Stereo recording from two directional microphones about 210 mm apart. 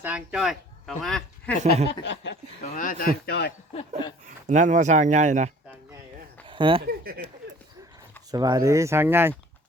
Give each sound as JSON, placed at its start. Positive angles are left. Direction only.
{"t": 0.0, "sound": "speech", "side_deg": -5}
{"t": 2.0, "sound": "speech", "side_deg": 55}
{"t": 2.7, "sound": "speech", "side_deg": 40}
{"t": 4.4, "sound": "speech", "side_deg": -35}
{"t": 6.5, "sound": "speech", "side_deg": -25}
{"t": 6.8, "sound": "speech", "side_deg": -45}
{"t": 8.3, "sound": "speech", "side_deg": -20}